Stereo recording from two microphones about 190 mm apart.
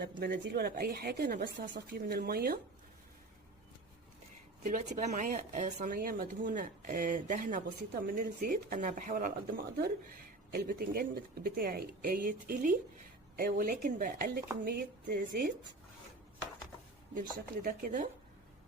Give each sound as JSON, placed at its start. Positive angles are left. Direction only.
{"t": 0.0, "sound": "speech", "side_deg": -60}
{"t": 4.6, "sound": "speech", "side_deg": -40}
{"t": 17.2, "sound": "speech", "side_deg": -45}